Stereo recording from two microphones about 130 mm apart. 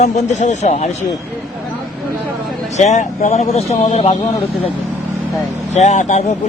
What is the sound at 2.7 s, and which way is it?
Speech, 65° left (ahead or behind).